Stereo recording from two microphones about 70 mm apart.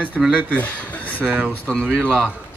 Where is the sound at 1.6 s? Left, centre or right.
Centre.